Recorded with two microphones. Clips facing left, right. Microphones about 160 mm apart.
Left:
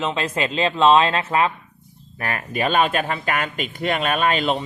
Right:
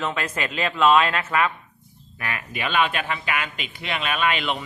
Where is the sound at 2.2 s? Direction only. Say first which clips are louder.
Left 6 dB; 40° left (ahead or behind).